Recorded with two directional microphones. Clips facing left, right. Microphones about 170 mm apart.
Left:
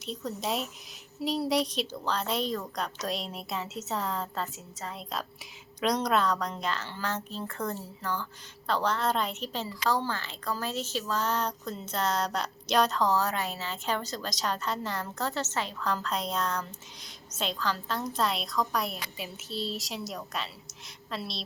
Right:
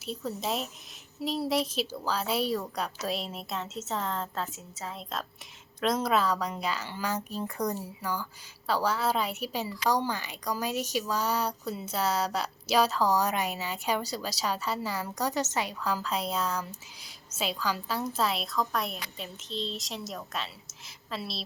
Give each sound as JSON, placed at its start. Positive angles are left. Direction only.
{"t": 0.0, "sound": "a woman's voice", "side_deg": -5}